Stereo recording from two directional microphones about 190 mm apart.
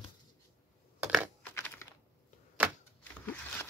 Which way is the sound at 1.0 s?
10° right (ahead or behind).